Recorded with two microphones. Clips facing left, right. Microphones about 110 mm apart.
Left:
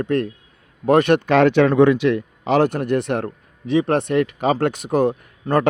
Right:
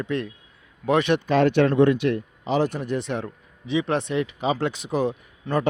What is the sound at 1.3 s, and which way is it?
Speech, 90° left.